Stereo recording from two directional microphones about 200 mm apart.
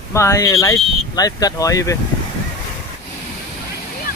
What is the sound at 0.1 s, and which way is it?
Speech, 15° left (ahead or behind).